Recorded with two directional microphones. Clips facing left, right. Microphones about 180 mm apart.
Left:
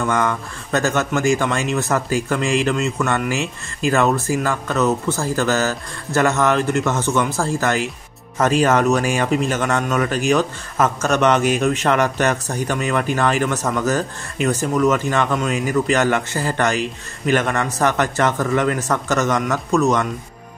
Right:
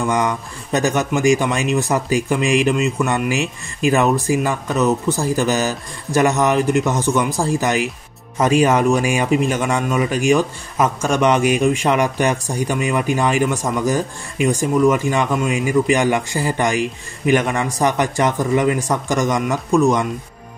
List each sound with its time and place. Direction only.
0.0 s speech: 15° right (ahead or behind)